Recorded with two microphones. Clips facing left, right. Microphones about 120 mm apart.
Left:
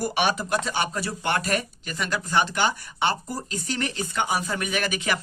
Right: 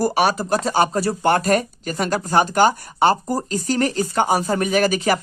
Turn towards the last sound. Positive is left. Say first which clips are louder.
# right 9 dB
turn(degrees=-40)  # may be behind; listen again after turning